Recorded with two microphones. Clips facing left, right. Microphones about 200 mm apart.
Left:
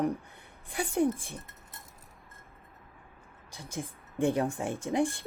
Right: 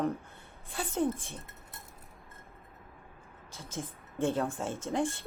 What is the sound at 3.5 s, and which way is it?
Speech, 15° left (ahead or behind).